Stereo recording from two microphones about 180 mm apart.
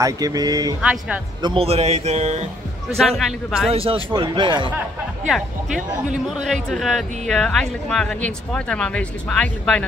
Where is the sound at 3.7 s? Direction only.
30° right (ahead or behind).